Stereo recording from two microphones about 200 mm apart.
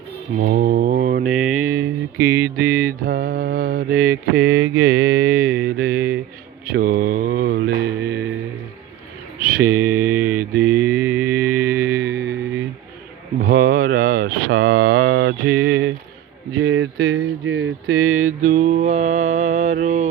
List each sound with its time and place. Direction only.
0.3 s mantra: 45° right (ahead or behind)
1.3 s a sound: 5° right (ahead or behind)
1.7 s a sound: 15° right (ahead or behind)
2.3 s mantra: 10° right (ahead or behind)
3.0 s mantra: 45° right (ahead or behind)
9.4 s mantra: 45° right (ahead or behind)
9.6 s mantra: 10° right (ahead or behind)
12.0 s music: 55° right (ahead or behind)
13.4 s a sound: 45° right (ahead or behind)
15.4 s a sound: 90° right
16.7 s mantra: 65° right (ahead or behind); by 18.3 s 90° right
18.3 s mantra: 40° right (ahead or behind)